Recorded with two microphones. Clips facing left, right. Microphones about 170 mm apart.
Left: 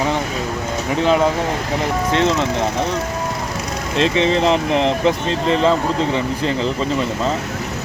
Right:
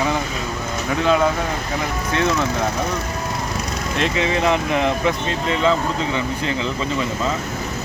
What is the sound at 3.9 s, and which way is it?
Speech, 25° left (ahead or behind).